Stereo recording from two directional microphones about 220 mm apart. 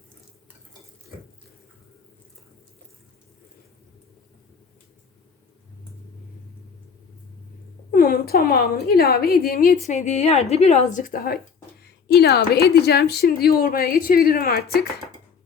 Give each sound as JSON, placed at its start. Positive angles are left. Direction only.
{"t": 7.9, "sound": "a woman's voice", "side_deg": 40}
{"t": 10.9, "sound": "a woman's voice", "side_deg": 40}